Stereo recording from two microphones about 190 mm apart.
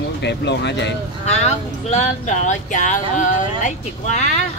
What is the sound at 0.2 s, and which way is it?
Speech, 65° left (ahead or behind).